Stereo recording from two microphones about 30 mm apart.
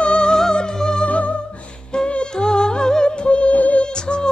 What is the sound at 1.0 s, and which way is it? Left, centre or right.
Music, left.